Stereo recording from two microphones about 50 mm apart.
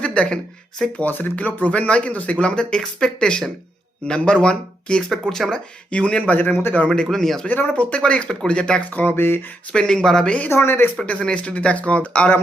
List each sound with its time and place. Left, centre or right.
0.0 s a sound: left
0.9 s speech: left; by 5.5 s centre
5.9 s speech: left
6.3 s a man's voice: left
6.9 s speech: centre
7.4 s speech: left
8.9 s speech: left
9.1 s a man's voice: left
9.7 s speech: centre
10.5 s speech: left
11.0 s speech: left